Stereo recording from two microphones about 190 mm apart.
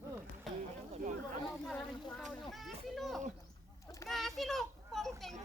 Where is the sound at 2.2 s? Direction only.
Centre (ahead or behind).